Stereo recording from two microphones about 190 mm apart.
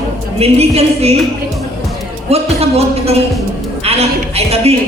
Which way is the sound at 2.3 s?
35° right (ahead or behind).